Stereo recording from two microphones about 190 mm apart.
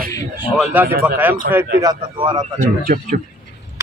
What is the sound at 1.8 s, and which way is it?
Speech, 20° right (ahead or behind).